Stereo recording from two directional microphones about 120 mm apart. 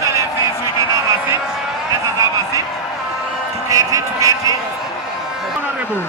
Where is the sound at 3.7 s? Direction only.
25° right (ahead or behind).